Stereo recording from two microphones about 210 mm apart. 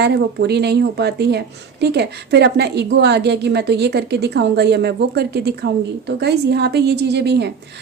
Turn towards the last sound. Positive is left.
turn(degrees=-55)  # may be behind; listen again after turning